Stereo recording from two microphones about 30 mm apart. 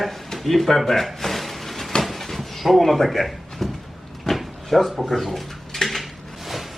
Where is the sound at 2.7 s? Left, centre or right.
Centre.